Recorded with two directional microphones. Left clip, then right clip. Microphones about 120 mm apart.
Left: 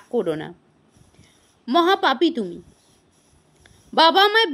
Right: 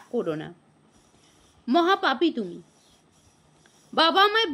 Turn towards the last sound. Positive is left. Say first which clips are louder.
# left 5 dB
turn(degrees=40)  # may be behind; listen again after turning